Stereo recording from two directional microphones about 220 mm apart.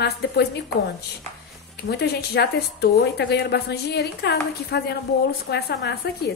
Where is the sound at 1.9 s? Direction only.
50° left (ahead or behind).